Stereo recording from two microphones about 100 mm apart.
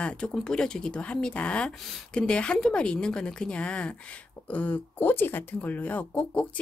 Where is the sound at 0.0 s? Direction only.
10° left (ahead or behind).